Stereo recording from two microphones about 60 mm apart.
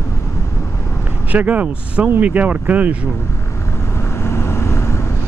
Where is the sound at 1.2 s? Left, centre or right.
Right.